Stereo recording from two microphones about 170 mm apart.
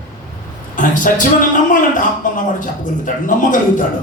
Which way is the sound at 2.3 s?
50° left (ahead or behind).